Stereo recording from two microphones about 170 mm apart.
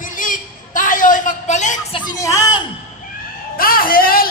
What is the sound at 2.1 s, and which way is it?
Music, 20° left (ahead or behind).